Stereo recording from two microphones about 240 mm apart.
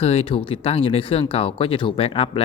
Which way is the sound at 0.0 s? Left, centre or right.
Left.